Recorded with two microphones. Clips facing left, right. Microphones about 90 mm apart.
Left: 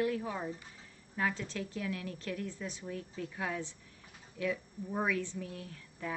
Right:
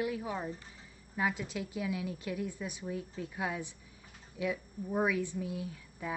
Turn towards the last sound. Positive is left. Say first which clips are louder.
# right 1 dB
turn(degrees=-10)  # may be behind; listen again after turning